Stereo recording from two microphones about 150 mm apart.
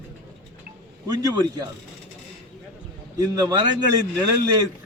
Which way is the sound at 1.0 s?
25° right (ahead or behind).